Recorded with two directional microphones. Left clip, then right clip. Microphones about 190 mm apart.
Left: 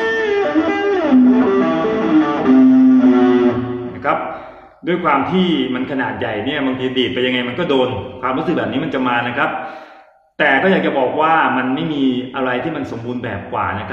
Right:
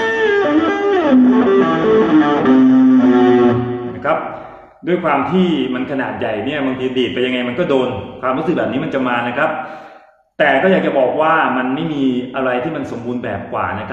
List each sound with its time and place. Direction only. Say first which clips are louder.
0.0 s music: right 2 dB; 50° right (ahead or behind)
4.8 s a man's voice: even; 5° right (ahead or behind)